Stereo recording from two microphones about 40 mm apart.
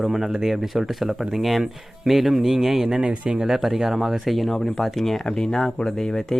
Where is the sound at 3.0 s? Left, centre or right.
Right.